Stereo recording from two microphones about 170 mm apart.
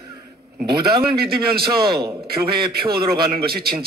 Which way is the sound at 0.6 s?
25° right (ahead or behind).